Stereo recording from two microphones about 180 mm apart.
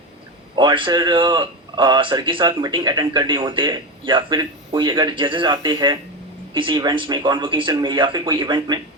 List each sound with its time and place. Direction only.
0.5 s speech: 25° right (ahead or behind)